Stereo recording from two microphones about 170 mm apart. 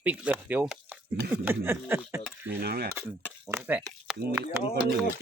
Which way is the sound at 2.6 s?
65° right (ahead or behind).